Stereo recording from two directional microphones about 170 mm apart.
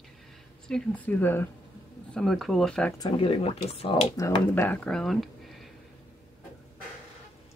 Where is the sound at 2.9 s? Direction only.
25° left (ahead or behind).